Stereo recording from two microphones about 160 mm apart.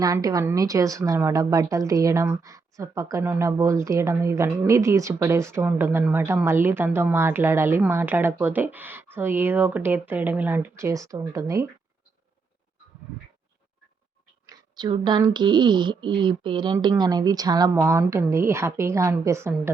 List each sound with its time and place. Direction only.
0.0 s a woman's voice: 20° right (ahead or behind)
13.1 s a woman's voice: 10° right (ahead or behind)
14.4 s speech: 25° right (ahead or behind)